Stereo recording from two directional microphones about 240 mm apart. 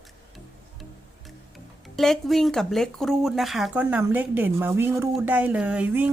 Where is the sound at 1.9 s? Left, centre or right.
Centre.